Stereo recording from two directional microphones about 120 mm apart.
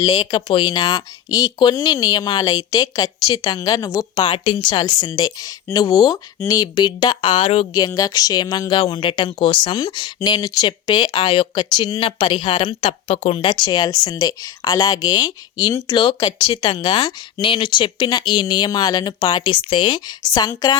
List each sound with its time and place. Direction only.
0.0 s speech: 40° left (ahead or behind)
4.1 s speech: 45° left (ahead or behind)
7.7 s speech: 30° left (ahead or behind)
12.8 s speech: 55° left (ahead or behind); by 20.7 s 30° left (ahead or behind)